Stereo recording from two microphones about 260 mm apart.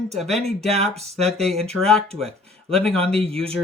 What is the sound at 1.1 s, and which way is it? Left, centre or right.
Speech, centre.